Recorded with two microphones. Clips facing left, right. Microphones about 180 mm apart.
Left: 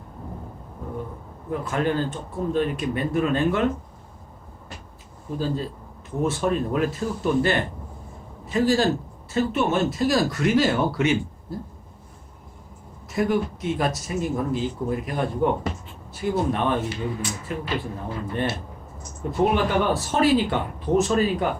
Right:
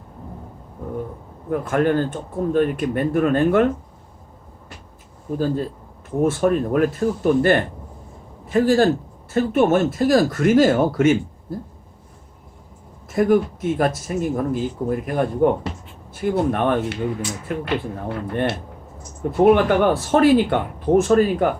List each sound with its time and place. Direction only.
1.5 s speech: 55° right (ahead or behind)
5.3 s speech: 50° right (ahead or behind)
13.1 s speech: 50° right (ahead or behind)